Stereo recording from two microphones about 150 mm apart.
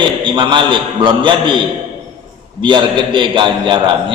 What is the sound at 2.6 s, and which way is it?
A man's voice, 30° right (ahead or behind).